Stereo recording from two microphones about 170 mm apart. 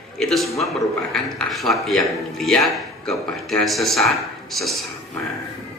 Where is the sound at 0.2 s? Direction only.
Centre (ahead or behind).